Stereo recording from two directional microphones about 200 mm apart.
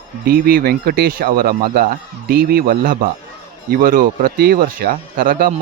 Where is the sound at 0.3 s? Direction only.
45° right (ahead or behind).